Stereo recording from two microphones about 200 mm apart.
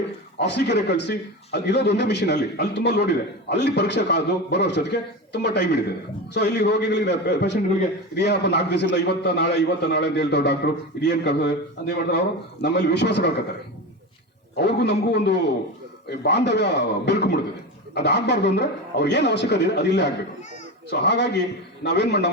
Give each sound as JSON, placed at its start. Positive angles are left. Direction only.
{"t": 0.3, "sound": "a man's voice", "side_deg": 55}
{"t": 14.5, "sound": "a man's voice", "side_deg": 55}